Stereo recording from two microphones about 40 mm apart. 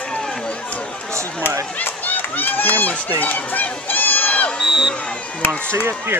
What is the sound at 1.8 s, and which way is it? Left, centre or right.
Speech, left.